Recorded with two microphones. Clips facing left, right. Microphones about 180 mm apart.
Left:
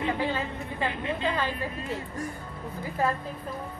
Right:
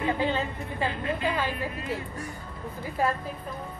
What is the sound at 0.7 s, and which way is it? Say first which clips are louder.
Speech: right 1 dB; 20° left (ahead or behind).